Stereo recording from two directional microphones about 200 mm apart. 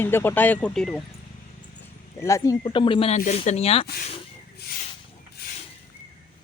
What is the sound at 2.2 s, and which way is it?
Speech, 15° left (ahead or behind).